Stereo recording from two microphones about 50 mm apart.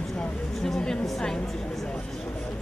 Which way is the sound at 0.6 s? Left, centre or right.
Centre.